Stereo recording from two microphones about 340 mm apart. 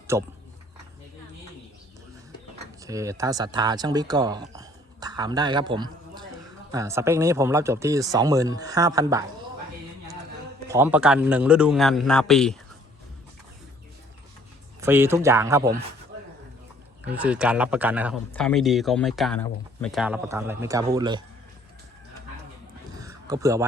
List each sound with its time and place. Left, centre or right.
0.1 s speech: centre
2.8 s speech: centre
10.7 s a man's voice: centre
14.8 s speech: centre
17.1 s a man's voice: centre
23.0 s a sound: centre